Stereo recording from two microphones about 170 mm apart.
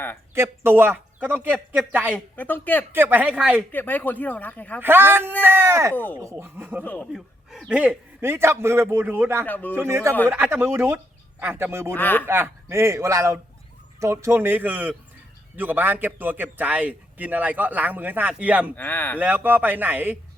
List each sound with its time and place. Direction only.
0.3 s a man's voice: 15° right (ahead or behind)
2.1 s speech: 10° left (ahead or behind)
2.9 s a man's voice: 10° right (ahead or behind)
3.7 s speech: 10° left (ahead or behind)
4.8 s a man's voice: 10° right (ahead or behind)
6.8 s speech: 10° left (ahead or behind)
7.1 s a man's voice: centre (ahead or behind)
9.5 s speech: 10° left (ahead or behind)
9.7 s a man's voice: 15° right (ahead or behind)
11.9 s speech: 10° left (ahead or behind)
12.3 s a man's voice: 15° right (ahead or behind)
18.8 s speech: 10° left (ahead or behind)
19.2 s a man's voice: 10° right (ahead or behind)